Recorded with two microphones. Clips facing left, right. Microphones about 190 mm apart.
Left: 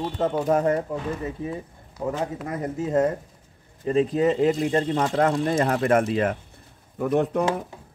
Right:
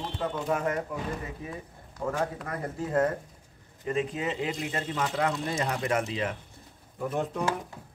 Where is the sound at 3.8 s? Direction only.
35° left (ahead or behind); by 6.1 s 55° left (ahead or behind).